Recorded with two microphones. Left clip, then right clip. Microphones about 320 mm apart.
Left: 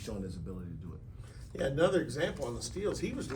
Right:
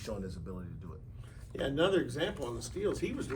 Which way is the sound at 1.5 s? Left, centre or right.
Centre.